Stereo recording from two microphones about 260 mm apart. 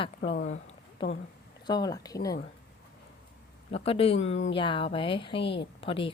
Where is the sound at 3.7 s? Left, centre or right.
Left.